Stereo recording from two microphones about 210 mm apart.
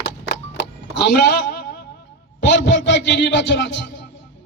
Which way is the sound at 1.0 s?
55° left (ahead or behind).